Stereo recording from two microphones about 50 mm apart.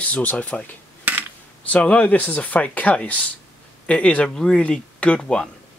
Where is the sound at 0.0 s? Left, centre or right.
Left.